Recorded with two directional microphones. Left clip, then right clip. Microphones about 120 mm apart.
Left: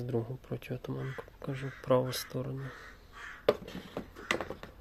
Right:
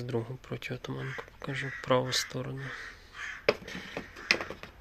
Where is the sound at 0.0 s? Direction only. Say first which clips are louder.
Right 1 dB; 20° left (ahead or behind).